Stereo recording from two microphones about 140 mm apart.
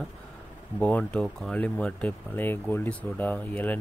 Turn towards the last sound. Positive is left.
turn(degrees=10)  # may be behind; listen again after turning